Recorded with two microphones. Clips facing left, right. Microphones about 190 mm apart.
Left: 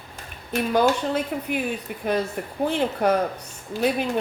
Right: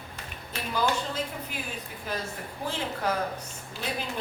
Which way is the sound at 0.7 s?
60° left (ahead or behind).